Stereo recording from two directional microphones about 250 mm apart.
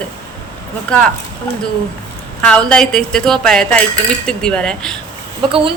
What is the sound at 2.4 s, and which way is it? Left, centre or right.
Speech, centre.